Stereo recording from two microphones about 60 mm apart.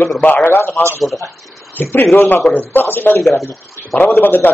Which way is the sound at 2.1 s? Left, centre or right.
Left.